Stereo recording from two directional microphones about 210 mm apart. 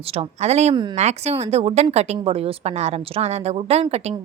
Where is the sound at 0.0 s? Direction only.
30° right (ahead or behind).